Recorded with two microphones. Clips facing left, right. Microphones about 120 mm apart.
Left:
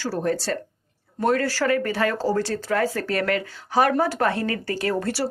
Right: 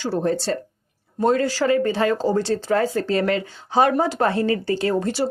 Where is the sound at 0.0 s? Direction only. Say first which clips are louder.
Right 3 dB; 25° right (ahead or behind).